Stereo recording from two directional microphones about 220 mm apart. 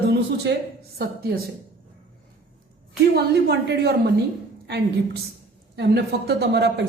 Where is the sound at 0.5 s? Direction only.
50° right (ahead or behind).